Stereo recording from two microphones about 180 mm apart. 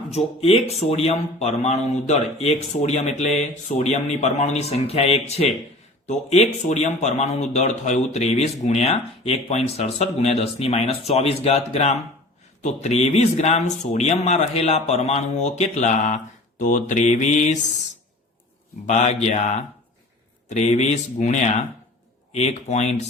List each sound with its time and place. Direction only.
0.4 s a man's voice: 35° left (ahead or behind)
18.9 s a man's voice: 40° left (ahead or behind)